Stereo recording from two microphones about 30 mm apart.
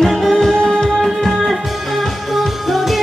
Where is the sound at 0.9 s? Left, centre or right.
Centre.